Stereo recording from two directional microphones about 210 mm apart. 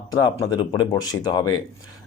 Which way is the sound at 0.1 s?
20° left (ahead or behind).